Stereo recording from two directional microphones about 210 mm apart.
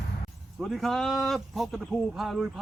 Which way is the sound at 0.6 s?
Centre (ahead or behind).